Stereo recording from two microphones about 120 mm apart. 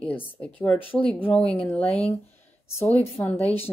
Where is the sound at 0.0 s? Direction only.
10° left (ahead or behind).